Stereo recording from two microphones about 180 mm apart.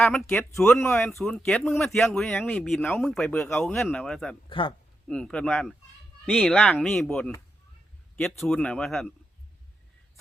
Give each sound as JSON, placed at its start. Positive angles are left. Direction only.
{"t": 0.0, "sound": "speech", "side_deg": 5}
{"t": 4.4, "sound": "speech", "side_deg": 30}
{"t": 5.0, "sound": "speech", "side_deg": 5}